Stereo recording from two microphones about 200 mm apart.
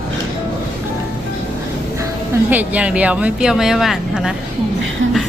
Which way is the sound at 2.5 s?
10° right (ahead or behind).